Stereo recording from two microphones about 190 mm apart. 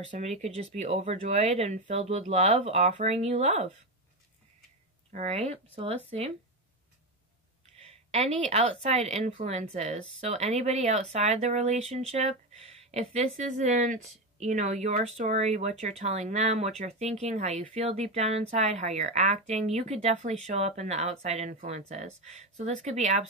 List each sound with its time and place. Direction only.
0.2 s speech: 35° right (ahead or behind)
5.1 s speech: 35° right (ahead or behind)
7.8 s speech: 35° right (ahead or behind)